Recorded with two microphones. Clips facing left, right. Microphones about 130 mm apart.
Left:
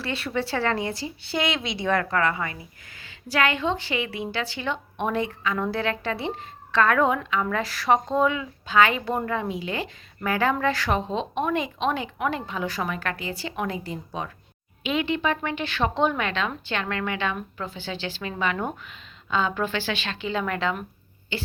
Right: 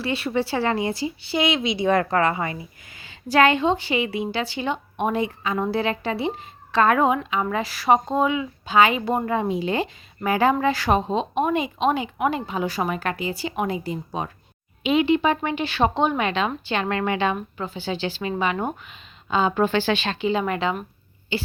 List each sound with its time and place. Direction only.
0.0 s speech: 5° right (ahead or behind)
1.9 s a woman's voice: 25° right (ahead or behind)
19.5 s speech: 35° right (ahead or behind)
20.2 s speech: 15° right (ahead or behind)